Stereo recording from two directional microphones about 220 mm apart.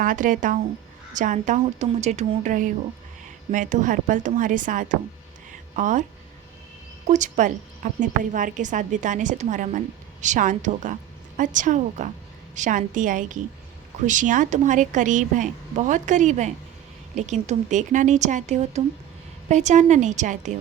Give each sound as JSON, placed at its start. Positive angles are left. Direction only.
{"t": 0.0, "sound": "speech", "side_deg": -35}
{"t": 7.1, "sound": "speech", "side_deg": -35}